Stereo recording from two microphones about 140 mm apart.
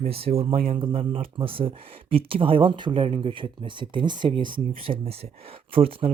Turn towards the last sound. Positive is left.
turn(degrees=-40)  # may be behind; listen again after turning